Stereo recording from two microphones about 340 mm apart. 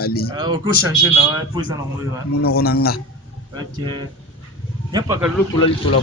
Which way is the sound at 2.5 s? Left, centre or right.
Left.